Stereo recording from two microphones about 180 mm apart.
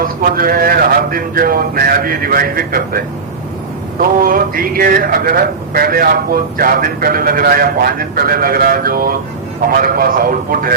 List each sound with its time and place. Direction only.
0.0 s speech: 55° right (ahead or behind)
4.2 s speech: 50° right (ahead or behind)